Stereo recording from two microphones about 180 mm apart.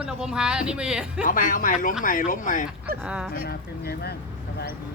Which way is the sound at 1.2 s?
50° left (ahead or behind).